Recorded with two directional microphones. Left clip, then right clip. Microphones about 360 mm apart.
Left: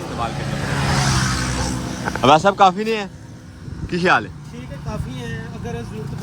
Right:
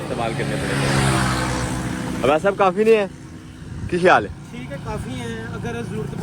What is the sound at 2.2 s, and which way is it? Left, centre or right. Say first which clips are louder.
Speech: left 4 dB; centre.